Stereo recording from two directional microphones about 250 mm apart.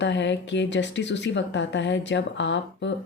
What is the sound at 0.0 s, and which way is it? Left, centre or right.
Speech, left.